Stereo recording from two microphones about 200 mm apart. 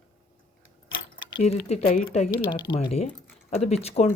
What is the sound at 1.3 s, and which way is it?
Speech, 30° left (ahead or behind).